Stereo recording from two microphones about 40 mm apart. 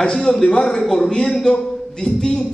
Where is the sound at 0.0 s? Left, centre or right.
Centre.